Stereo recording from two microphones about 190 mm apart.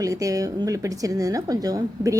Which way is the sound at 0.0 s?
15° right (ahead or behind).